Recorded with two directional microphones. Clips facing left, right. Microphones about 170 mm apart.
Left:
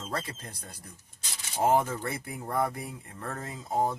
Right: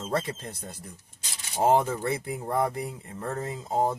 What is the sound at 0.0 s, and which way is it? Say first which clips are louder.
Speech: right 6 dB; 25° right (ahead or behind).